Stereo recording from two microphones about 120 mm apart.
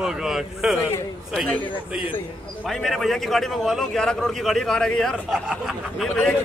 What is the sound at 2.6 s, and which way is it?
A man's voice, centre (ahead or behind).